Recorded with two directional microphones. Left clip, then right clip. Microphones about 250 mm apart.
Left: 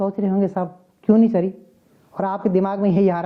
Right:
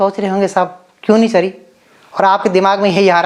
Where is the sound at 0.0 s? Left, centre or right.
Centre.